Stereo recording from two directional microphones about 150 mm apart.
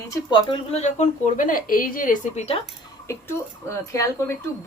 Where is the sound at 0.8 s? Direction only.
55° left (ahead or behind).